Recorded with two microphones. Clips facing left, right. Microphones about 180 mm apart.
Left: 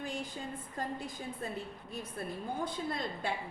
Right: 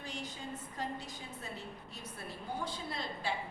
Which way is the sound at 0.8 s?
50° left (ahead or behind).